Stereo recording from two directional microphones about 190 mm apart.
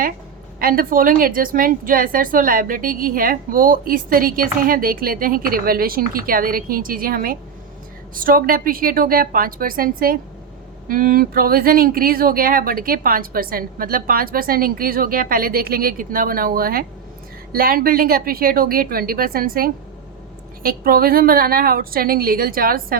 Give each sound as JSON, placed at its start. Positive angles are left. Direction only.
{"t": 0.6, "sound": "a woman's voice", "side_deg": -50}